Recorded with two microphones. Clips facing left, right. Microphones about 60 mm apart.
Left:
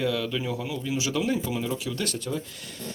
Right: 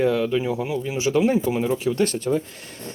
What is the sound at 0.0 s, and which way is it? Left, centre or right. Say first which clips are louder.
Speech: right 7 dB; right.